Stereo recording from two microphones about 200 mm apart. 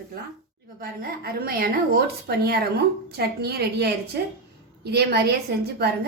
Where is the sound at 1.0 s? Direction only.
50° right (ahead or behind).